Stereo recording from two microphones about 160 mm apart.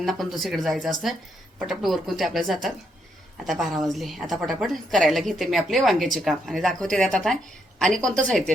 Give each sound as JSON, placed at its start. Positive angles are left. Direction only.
{"t": 0.0, "sound": "a woman's voice", "side_deg": 0}